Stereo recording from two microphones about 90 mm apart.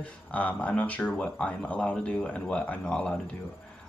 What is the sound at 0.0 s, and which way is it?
Speech, 15° left (ahead or behind).